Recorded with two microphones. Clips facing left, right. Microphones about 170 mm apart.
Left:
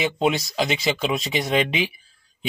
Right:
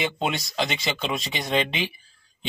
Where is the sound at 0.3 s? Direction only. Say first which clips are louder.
Left 4 dB; centre (ahead or behind).